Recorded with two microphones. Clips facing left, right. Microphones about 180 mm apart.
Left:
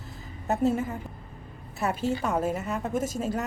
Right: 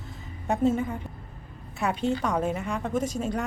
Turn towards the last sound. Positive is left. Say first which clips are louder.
# right 1 dB
turn(degrees=5)  # may be behind; listen again after turning